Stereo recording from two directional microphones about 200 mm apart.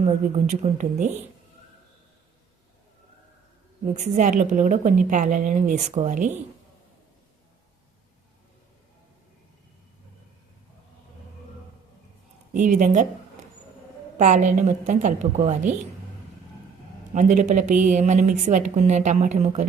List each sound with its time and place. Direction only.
0.0 s a woman's voice: 35° right (ahead or behind)
3.9 s a woman's voice: 35° right (ahead or behind)
12.5 s a woman's voice: 40° right (ahead or behind)
14.2 s a woman's voice: 40° right (ahead or behind)
17.2 s a woman's voice: 40° right (ahead or behind)